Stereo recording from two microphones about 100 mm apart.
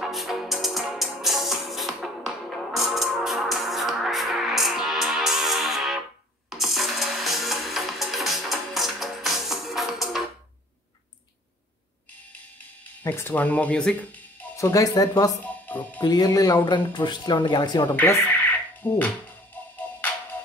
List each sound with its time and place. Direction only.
0.0 s music: centre (ahead or behind)
13.0 s speech: 25° left (ahead or behind)
14.6 s speech: 35° left (ahead or behind)
15.4 s music: 15° left (ahead or behind)
16.0 s speech: 45° left (ahead or behind)
16.5 s speech: 50° left (ahead or behind)
17.9 s music: 20° left (ahead or behind)